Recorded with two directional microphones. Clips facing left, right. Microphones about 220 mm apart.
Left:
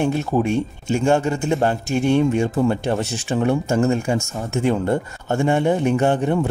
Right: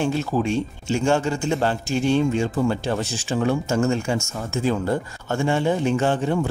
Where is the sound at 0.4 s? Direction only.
55° left (ahead or behind).